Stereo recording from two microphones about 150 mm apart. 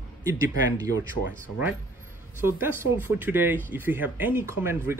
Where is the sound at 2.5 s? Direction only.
15° right (ahead or behind).